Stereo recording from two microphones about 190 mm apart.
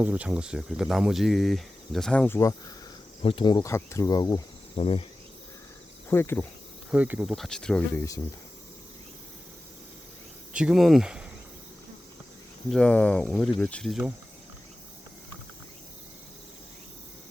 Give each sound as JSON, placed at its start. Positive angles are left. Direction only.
{"t": 0.0, "sound": "speech", "side_deg": -5}
{"t": 6.1, "sound": "speech", "side_deg": 10}
{"t": 6.9, "sound": "speech", "side_deg": -5}
{"t": 10.5, "sound": "speech", "side_deg": -5}
{"t": 12.7, "sound": "speech", "side_deg": 5}